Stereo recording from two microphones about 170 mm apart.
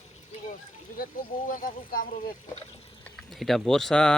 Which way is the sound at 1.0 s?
50° left (ahead or behind).